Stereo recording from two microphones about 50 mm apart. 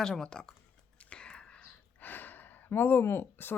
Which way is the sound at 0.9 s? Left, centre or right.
Left.